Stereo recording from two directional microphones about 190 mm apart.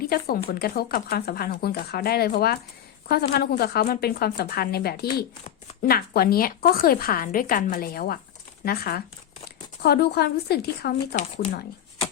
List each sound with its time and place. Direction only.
0.0 s speech: 50° left (ahead or behind)